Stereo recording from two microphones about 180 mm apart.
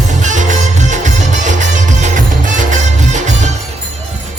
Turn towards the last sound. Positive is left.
turn(degrees=-40)  # may be behind; listen again after turning